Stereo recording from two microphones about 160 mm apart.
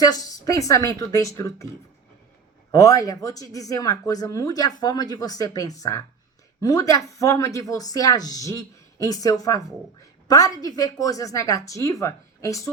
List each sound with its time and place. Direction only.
0.0 s a woman's voice: 20° left (ahead or behind)
2.7 s a woman's voice: 20° left (ahead or behind)